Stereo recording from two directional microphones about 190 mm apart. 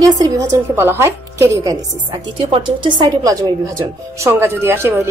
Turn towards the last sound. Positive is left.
turn(degrees=-10)  # may be behind; listen again after turning